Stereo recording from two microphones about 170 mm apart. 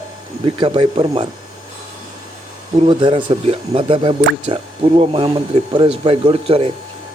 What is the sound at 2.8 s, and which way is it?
Speech, 30° right (ahead or behind).